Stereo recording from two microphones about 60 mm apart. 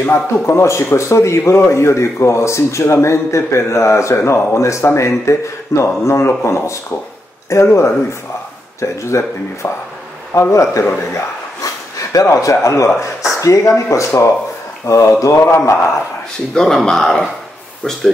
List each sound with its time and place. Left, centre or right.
0.0 s speech: left
15.6 s speech: left
16.5 s speech: centre